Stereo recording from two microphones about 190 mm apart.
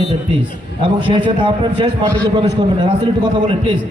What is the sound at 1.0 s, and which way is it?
Speech, 25° right (ahead or behind).